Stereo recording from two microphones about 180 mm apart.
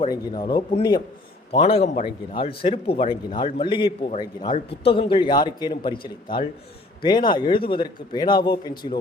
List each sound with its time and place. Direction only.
0.1 s a man's voice: 25° left (ahead or behind)